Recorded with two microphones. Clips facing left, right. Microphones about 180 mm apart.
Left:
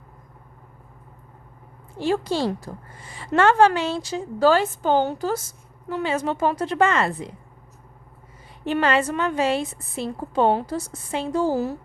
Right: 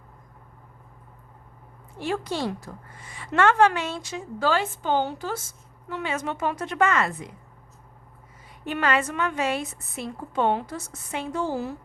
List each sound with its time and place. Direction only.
2.0 s a woman's voice: 30° left (ahead or behind)
8.6 s a woman's voice: 30° left (ahead or behind)